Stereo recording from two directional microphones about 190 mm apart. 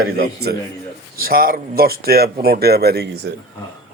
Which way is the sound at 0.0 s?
55° right (ahead or behind).